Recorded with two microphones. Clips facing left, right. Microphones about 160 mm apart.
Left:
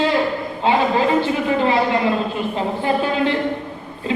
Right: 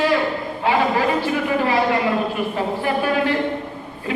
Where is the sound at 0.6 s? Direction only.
25° left (ahead or behind).